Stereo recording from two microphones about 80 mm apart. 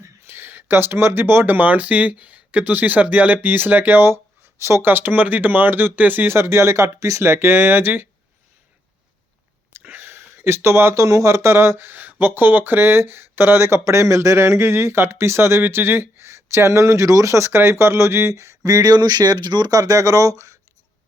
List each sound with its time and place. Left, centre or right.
0.3 s speech: right
9.7 s speech: right
19.8 s speech: right